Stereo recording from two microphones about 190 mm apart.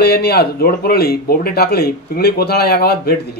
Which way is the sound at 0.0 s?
55° left (ahead or behind).